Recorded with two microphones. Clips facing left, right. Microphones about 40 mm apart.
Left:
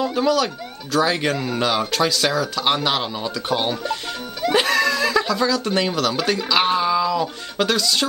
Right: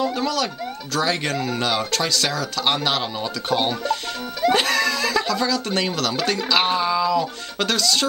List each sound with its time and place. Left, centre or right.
0.0 s speech: centre